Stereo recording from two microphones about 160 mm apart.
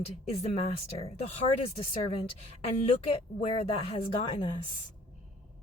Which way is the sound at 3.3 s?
40° left (ahead or behind).